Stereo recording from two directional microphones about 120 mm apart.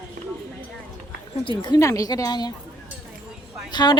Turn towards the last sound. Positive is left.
turn(degrees=35)  # may be behind; listen again after turning